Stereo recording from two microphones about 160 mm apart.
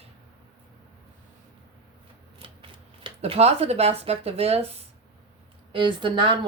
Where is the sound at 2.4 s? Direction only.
35° right (ahead or behind).